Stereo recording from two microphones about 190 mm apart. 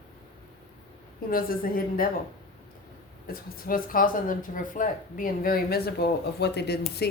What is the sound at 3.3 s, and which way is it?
Speech, 50° left (ahead or behind).